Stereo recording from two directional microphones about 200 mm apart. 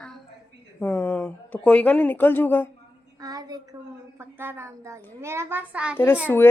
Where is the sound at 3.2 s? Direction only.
20° right (ahead or behind).